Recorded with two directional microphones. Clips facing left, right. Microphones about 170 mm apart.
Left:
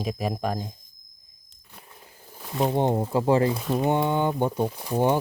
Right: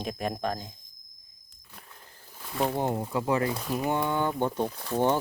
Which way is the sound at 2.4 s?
20° left (ahead or behind).